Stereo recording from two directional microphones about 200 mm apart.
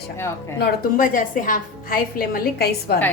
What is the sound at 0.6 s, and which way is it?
A woman's voice, 45° left (ahead or behind).